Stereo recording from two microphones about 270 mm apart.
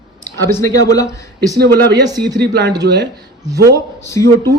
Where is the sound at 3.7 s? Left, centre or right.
Centre.